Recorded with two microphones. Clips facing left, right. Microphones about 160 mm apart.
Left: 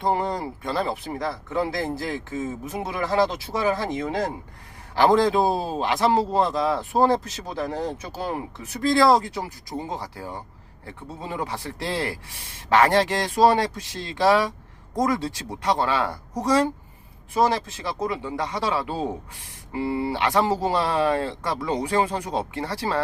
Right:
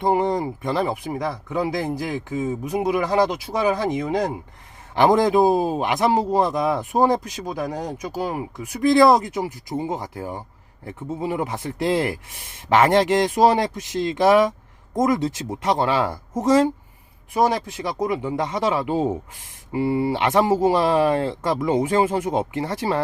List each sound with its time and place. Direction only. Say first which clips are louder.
0.0 s a man's voice: right 4 dB; 20° right (ahead or behind)